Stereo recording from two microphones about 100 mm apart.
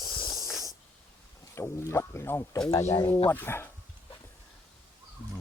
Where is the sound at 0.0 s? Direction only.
50° left (ahead or behind).